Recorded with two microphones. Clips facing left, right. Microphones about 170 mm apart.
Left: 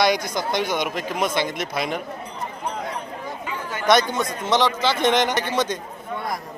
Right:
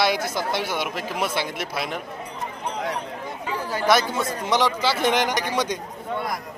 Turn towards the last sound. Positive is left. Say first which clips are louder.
# left 1 dB
turn(degrees=-10)  # may be behind; listen again after turning